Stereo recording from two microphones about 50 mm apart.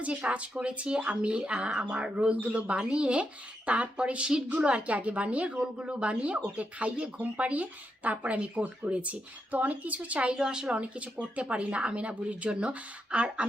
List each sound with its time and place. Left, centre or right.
0.0 s a woman's voice: right